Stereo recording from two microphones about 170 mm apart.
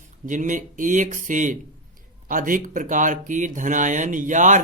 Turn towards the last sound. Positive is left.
turn(degrees=-45)  # may be behind; listen again after turning